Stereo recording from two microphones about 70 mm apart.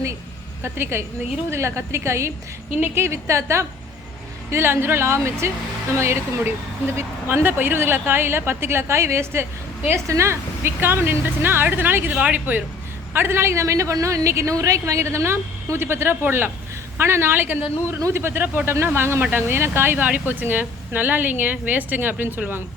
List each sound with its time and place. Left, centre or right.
0.6 s a woman's voice: right
13.1 s a woman's voice: right